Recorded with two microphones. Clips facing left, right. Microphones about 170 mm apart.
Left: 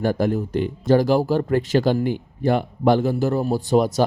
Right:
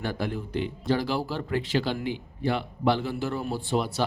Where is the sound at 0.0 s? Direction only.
45° left (ahead or behind).